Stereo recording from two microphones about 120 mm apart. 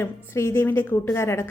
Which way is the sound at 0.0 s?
20° left (ahead or behind).